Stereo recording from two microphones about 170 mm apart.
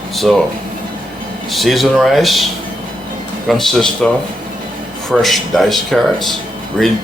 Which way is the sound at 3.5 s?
Centre (ahead or behind).